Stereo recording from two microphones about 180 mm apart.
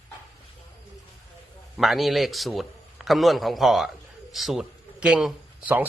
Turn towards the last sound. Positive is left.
turn(degrees=-5)  # may be behind; listen again after turning